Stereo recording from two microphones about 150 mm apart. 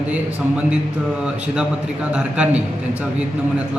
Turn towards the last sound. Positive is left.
turn(degrees=-5)  # may be behind; listen again after turning